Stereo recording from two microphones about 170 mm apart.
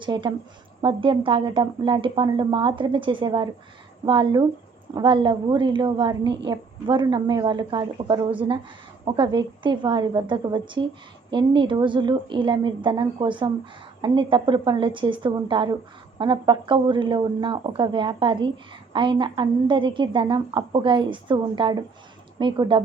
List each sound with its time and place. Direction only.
0.0 s a woman's voice: 30° right (ahead or behind)